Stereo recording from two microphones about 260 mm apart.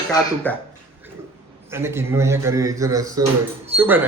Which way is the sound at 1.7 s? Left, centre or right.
Centre.